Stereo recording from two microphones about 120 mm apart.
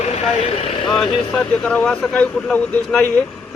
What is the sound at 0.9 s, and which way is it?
Speech, 40° left (ahead or behind).